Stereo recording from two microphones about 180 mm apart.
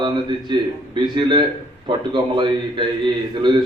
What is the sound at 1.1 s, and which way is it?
A man's voice, 25° right (ahead or behind).